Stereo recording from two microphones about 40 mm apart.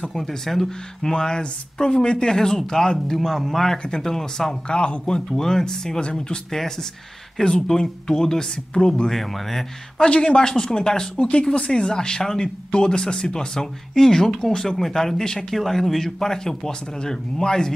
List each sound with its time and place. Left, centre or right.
0.1 s speech: centre
4.6 s speech: left
6.5 s speech: centre
9.1 s speech: centre
9.9 s speech: left